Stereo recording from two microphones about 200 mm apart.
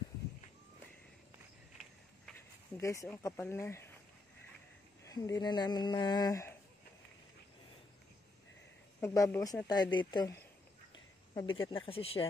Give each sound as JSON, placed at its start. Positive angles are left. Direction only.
{"t": 2.8, "sound": "speech", "side_deg": 15}
{"t": 5.0, "sound": "speech", "side_deg": 15}
{"t": 9.0, "sound": "speech", "side_deg": 15}